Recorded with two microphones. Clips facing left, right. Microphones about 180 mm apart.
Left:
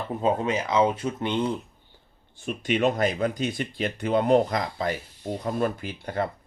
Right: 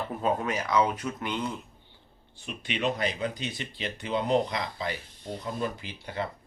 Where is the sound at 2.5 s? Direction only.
45° left (ahead or behind).